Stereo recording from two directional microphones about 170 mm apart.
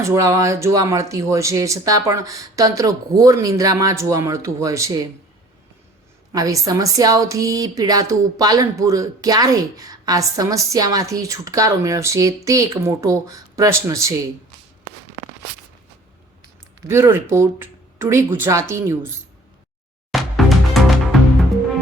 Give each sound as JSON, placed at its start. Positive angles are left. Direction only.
{"t": 0.0, "sound": "a woman's voice", "side_deg": -20}
{"t": 6.3, "sound": "a woman's voice", "side_deg": -20}
{"t": 16.8, "sound": "speech", "side_deg": -15}
{"t": 20.1, "sound": "music", "side_deg": 0}